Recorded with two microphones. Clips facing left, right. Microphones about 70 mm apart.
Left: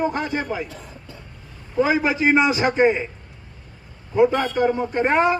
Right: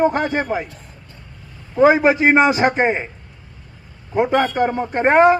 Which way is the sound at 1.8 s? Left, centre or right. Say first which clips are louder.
Right 6 dB; right.